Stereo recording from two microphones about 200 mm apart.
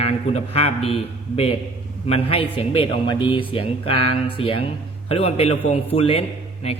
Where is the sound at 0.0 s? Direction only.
30° left (ahead or behind).